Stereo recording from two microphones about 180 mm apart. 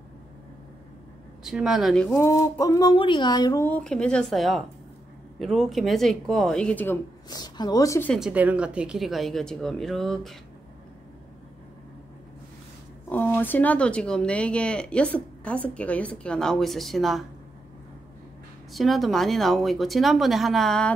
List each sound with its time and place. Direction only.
1.4 s speech: 5° right (ahead or behind)
2.2 s speech: 15° left (ahead or behind)
2.5 s a sound: 20° left (ahead or behind)
3.6 s speech: 5° left (ahead or behind)
7.2 s a sound: 20° left (ahead or behind)
8.1 s speech: 5° right (ahead or behind)
13.1 s speech: 10° left (ahead or behind)
18.7 s speech: centre (ahead or behind)